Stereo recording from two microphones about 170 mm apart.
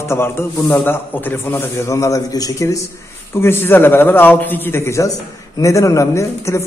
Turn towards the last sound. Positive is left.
turn(degrees=15)  # may be behind; listen again after turning